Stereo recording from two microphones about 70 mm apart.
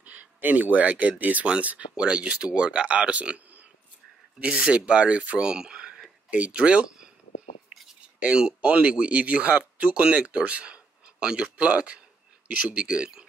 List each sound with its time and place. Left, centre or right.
0.0 s speech: right
8.2 s speech: centre